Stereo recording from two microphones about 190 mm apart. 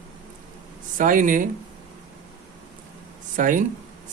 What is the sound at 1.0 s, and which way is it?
Speech, 45° right (ahead or behind).